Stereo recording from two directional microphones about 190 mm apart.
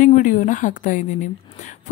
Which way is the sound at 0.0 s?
45° left (ahead or behind).